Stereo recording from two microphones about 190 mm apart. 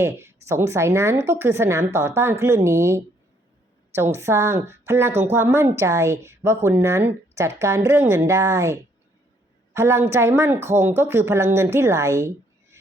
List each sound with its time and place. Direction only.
0.0 s a woman's voice: 15° right (ahead or behind)